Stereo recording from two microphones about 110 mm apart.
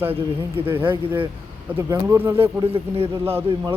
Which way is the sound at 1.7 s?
20° right (ahead or behind).